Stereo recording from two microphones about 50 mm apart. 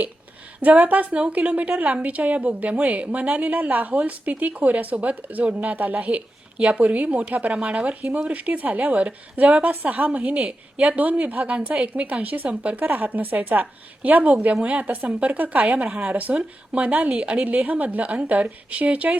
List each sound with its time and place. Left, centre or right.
0.8 s a woman's voice: right